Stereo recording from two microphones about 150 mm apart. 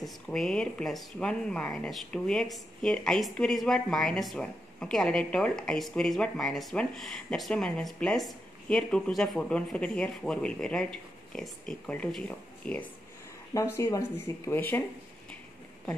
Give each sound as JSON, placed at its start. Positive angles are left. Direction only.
{"t": 0.0, "sound": "speech", "side_deg": 5}
{"t": 13.5, "sound": "speech", "side_deg": 20}